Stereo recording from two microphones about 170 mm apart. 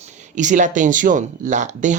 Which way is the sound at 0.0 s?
45° right (ahead or behind).